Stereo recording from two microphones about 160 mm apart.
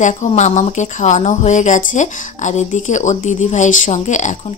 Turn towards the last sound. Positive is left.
turn(degrees=50)  # may be behind; listen again after turning